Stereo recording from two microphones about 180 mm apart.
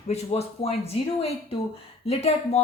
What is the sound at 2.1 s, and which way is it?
Speech, 35° left (ahead or behind).